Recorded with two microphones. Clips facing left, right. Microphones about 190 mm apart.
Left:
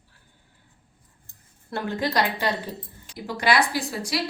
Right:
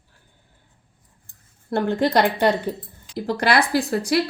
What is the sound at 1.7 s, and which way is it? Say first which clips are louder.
A woman's voice: right 7 dB; 50° right (ahead or behind).